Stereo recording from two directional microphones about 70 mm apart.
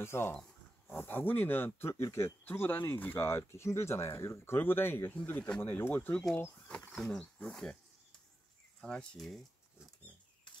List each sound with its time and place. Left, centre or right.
0.0 s speech: left
6.9 s speech: centre